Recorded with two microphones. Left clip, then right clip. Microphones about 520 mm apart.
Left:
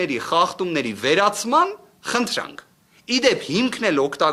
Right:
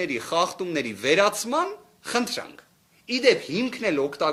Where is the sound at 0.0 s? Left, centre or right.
Left.